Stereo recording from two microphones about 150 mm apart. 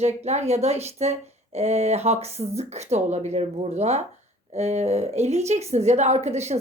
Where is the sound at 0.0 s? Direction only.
45° right (ahead or behind).